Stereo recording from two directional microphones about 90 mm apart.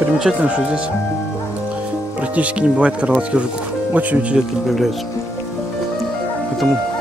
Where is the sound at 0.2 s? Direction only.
10° right (ahead or behind).